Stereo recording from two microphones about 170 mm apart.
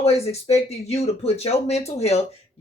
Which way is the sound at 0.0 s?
40° left (ahead or behind).